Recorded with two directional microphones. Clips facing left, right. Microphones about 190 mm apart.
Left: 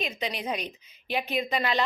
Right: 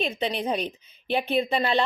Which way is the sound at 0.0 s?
30° right (ahead or behind).